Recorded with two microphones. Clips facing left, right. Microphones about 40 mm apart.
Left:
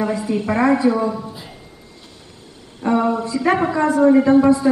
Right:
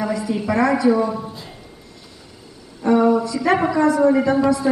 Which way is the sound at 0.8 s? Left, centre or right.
Centre.